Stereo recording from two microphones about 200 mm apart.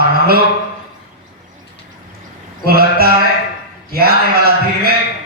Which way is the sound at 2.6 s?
50° right (ahead or behind).